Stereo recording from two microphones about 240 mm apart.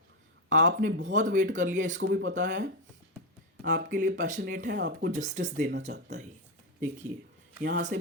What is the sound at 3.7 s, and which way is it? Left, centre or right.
Speech, right.